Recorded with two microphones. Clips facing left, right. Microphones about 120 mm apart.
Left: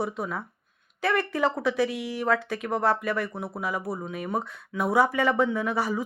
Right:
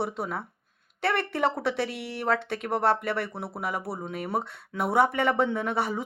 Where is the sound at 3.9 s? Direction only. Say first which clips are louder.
Even; 30° right (ahead or behind).